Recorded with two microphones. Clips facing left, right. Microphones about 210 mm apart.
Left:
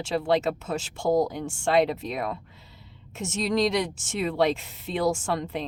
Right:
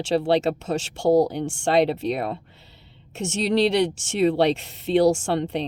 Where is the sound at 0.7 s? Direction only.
80° right.